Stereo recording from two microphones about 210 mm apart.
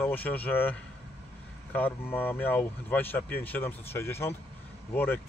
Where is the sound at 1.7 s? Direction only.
10° left (ahead or behind).